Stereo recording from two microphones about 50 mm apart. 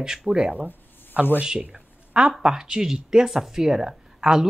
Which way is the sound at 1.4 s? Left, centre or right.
Right.